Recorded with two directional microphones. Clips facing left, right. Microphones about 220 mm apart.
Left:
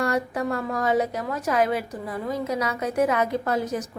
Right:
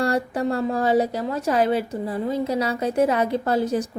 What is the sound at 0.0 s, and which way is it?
A woman's voice, 30° right (ahead or behind).